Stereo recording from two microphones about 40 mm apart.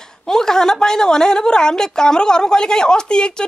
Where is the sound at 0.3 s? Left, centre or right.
Centre.